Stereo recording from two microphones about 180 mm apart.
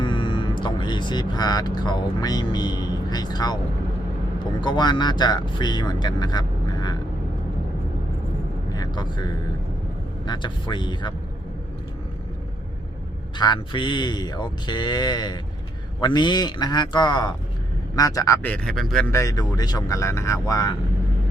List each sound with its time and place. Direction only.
0.0 s speech: 25° left (ahead or behind)
4.6 s speech: 25° left (ahead or behind)
8.7 s vehicle: 20° left (ahead or behind)
10.2 s speech: 25° left (ahead or behind)
13.3 s speech: 25° left (ahead or behind); by 19.1 s 5° left (ahead or behind)
19.1 s speech: 20° left (ahead or behind)